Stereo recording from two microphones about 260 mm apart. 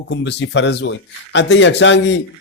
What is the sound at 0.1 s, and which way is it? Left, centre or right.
A man's voice, left.